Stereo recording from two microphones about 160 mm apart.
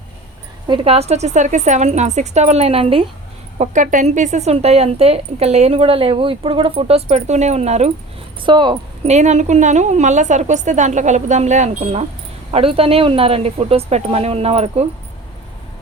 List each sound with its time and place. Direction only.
0.7 s a woman's voice: 40° right (ahead or behind)
3.6 s speech: 50° right (ahead or behind)
8.4 s speech: 30° right (ahead or behind)
9.0 s a woman's voice: 45° right (ahead or behind)
12.5 s speech: 35° right (ahead or behind)